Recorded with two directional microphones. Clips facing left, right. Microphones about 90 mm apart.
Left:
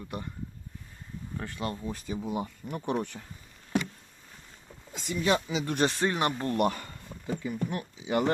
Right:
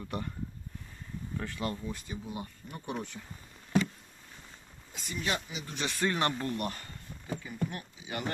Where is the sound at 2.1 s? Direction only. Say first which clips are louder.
Left 7 dB; 70° left (ahead or behind).